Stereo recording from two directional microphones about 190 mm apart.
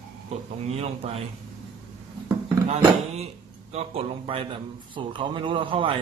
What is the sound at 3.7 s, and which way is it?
A man's voice, 30° right (ahead or behind).